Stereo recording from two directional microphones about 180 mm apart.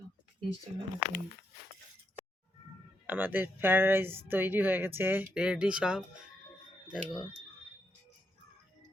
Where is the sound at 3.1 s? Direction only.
10° right (ahead or behind).